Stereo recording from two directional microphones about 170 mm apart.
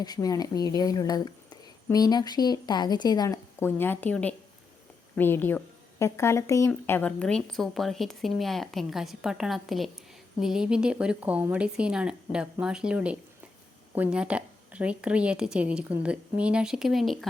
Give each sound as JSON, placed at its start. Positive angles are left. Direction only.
{"t": 0.0, "sound": "speech", "side_deg": 20}